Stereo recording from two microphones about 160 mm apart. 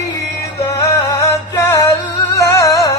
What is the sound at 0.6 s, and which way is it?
Music, 20° left (ahead or behind).